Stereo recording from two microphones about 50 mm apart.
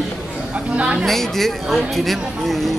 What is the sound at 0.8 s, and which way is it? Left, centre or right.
Speech, right.